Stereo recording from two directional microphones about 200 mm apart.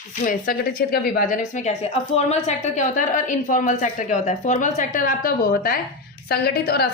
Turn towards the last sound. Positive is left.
turn(degrees=50)  # may be behind; listen again after turning